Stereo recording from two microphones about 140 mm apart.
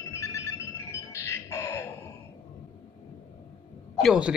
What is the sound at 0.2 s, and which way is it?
Music, 20° left (ahead or behind).